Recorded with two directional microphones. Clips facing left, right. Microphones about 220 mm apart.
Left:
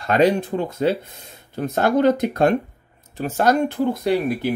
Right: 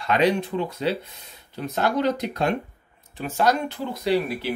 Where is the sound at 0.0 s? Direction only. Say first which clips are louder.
Left 4 dB; 45° left (ahead or behind).